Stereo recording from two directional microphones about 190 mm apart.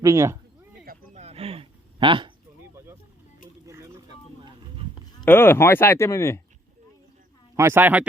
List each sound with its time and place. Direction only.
0.0 s speech: 15° right (ahead or behind)
0.9 s a sound: 35° right (ahead or behind)
5.2 s speech: 10° left (ahead or behind)
7.5 s speech: 15° right (ahead or behind)